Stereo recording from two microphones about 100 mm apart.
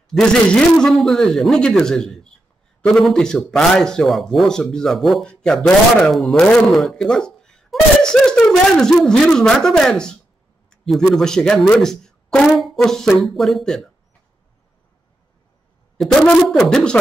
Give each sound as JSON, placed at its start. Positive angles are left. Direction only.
{"t": 0.1, "sound": "speech", "side_deg": 5}
{"t": 16.3, "sound": "speech", "side_deg": 5}